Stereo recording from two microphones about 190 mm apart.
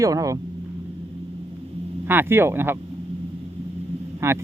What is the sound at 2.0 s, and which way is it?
Speech, 10° right (ahead or behind).